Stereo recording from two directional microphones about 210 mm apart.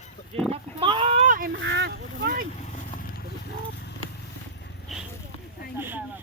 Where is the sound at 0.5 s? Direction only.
25° right (ahead or behind).